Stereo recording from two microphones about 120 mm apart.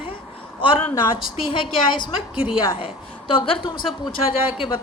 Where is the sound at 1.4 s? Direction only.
45° left (ahead or behind).